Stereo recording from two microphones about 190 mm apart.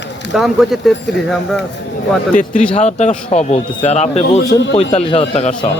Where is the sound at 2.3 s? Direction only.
45° left (ahead or behind).